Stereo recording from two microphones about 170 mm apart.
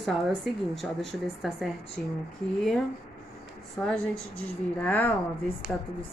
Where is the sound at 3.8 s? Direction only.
5° left (ahead or behind).